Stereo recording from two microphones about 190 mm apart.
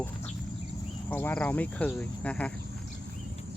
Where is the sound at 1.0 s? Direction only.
10° left (ahead or behind).